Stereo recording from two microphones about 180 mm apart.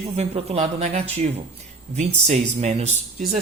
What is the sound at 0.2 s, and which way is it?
Speech, 35° right (ahead or behind).